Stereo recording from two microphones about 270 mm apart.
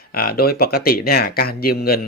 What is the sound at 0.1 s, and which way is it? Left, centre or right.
Speech, left.